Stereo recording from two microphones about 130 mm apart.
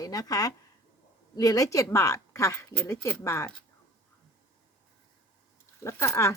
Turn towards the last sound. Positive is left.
turn(degrees=20)  # may be behind; listen again after turning